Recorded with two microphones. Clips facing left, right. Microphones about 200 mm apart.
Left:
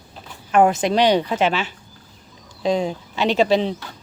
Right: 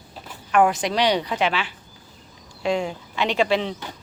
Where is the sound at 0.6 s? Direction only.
25° left (ahead or behind).